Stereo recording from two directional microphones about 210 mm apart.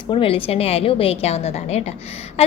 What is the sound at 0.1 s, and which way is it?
A woman's voice, 25° left (ahead or behind).